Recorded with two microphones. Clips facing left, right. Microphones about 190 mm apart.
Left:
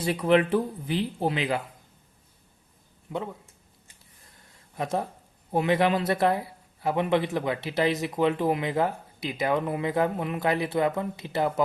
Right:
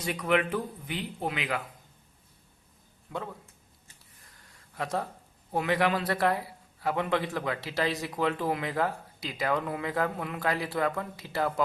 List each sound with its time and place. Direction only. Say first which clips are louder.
0.0 s speech: left 5 dB; 30° left (ahead or behind)
3.1 s speech: left 4 dB; 20° left (ahead or behind)
4.7 s speech: left 3 dB; 20° left (ahead or behind)